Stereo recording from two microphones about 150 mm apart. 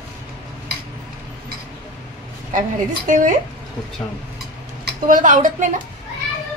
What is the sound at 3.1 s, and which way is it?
Speech, 60° right (ahead or behind).